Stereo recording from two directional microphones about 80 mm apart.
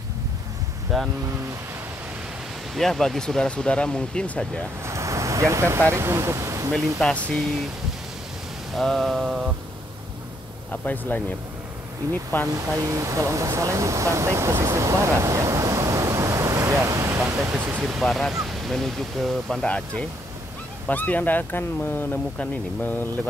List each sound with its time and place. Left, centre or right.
0.9 s speech: centre
2.7 s speech: centre
4.8 s speech: right
7.0 s speech: centre
8.7 s speech: centre
10.7 s speech: left
12.4 s speech: right
18.0 s speech: centre
19.6 s speech: centre